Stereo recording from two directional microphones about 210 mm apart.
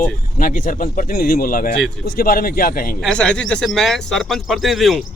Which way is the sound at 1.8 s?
5° left (ahead or behind).